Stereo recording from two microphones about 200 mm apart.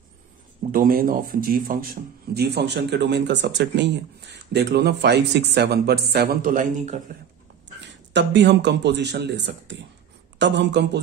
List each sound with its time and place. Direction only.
0.7 s a man's voice: 45° right (ahead or behind)
8.1 s a man's voice: 60° right (ahead or behind)